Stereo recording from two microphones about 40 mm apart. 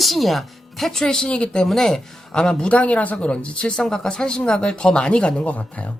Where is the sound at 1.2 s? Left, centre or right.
Left.